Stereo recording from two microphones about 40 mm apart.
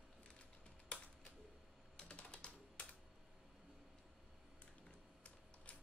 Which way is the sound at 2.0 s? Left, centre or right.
Left.